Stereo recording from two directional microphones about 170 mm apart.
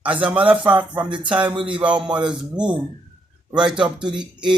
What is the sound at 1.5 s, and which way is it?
Speech, 30° right (ahead or behind).